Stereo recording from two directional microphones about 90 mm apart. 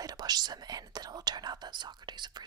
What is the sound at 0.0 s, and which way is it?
Speech, 45° right (ahead or behind).